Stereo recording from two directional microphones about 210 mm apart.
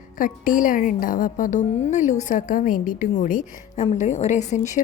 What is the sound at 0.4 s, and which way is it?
Speech, 40° left (ahead or behind).